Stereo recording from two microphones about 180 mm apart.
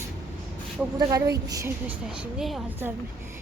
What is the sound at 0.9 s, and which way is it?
Speech, 25° right (ahead or behind).